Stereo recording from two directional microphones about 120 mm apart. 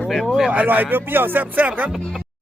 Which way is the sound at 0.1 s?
Centre (ahead or behind).